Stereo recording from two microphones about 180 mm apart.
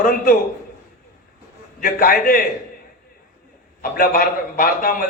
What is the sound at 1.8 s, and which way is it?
Speech, 55° left (ahead or behind).